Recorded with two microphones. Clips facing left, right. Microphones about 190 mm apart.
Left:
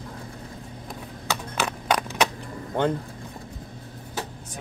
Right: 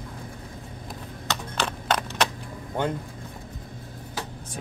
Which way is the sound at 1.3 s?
10° left (ahead or behind).